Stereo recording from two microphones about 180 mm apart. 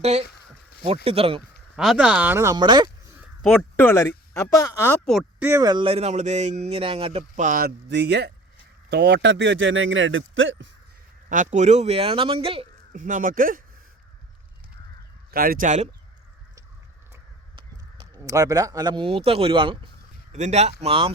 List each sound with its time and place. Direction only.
1.0 s speech: 35° right (ahead or behind)
1.7 s speech: 5° right (ahead or behind); by 2.9 s 25° right (ahead or behind)
3.5 s speech: 10° left (ahead or behind)
5.0 s speech: centre (ahead or behind)
5.5 s speech: 20° right (ahead or behind); by 7.7 s 50° right (ahead or behind)
7.9 s speech: 70° right (ahead or behind); by 10.7 s 90° right
11.3 s speech: 45° right (ahead or behind)
12.9 s speech: 45° right (ahead or behind)
15.3 s speech: 55° right (ahead or behind)
17.9 s speech: 20° right (ahead or behind)
20.3 s speech: 40° right (ahead or behind)